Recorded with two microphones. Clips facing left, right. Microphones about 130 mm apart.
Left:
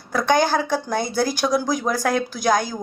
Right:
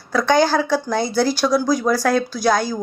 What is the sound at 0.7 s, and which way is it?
Speech, 15° left (ahead or behind).